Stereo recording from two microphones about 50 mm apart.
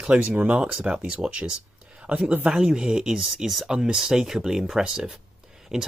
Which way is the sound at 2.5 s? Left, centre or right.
Centre.